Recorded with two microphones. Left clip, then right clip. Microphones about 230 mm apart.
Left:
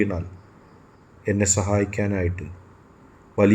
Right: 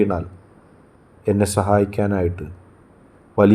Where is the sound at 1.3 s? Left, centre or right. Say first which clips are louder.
Right 5 dB; centre.